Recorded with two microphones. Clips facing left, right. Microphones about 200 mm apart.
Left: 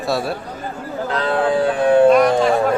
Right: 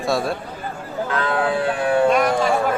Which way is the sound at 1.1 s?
35° left (ahead or behind).